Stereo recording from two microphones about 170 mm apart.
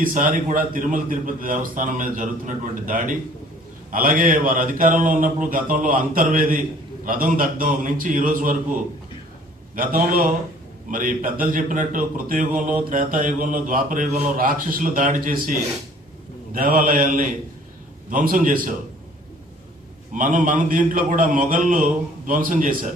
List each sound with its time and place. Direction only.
0.0 s a man's voice: 50° right (ahead or behind)
9.7 s a man's voice: 55° right (ahead or behind)
16.6 s a man's voice: 55° right (ahead or behind)
20.1 s a man's voice: 50° right (ahead or behind)